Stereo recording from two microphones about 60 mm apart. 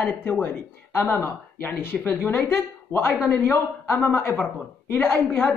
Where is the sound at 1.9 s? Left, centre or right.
Centre.